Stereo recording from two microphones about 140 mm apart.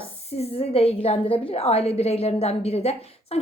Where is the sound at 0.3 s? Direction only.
45° left (ahead or behind).